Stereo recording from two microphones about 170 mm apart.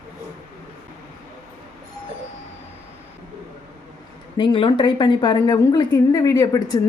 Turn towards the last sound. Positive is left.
turn(degrees=20)  # may be behind; listen again after turning